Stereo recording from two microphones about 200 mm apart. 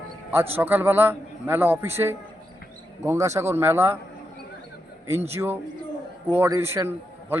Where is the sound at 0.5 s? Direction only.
10° right (ahead or behind).